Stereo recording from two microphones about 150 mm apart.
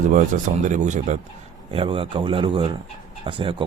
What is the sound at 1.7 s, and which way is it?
Speech, 35° right (ahead or behind).